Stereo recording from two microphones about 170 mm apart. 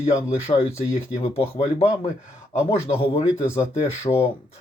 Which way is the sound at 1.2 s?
30° left (ahead or behind).